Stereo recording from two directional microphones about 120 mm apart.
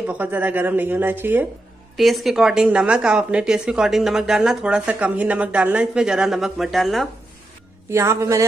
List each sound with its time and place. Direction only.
0.0 s a woman's voice: 10° right (ahead or behind)
2.0 s speech: centre (ahead or behind)
7.9 s a man's voice: 25° right (ahead or behind)